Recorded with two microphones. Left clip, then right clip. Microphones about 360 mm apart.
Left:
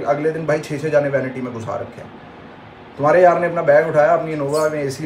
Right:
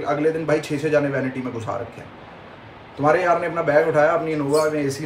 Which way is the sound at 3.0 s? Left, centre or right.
Centre.